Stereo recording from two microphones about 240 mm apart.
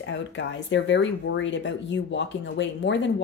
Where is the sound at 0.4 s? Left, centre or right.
Left.